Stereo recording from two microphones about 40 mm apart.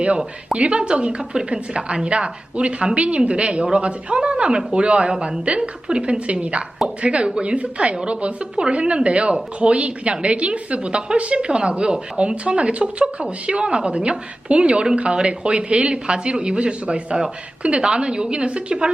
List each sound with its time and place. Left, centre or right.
0.5 s a woman's voice: right